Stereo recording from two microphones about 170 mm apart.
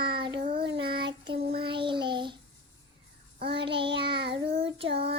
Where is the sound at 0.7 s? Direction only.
30° right (ahead or behind).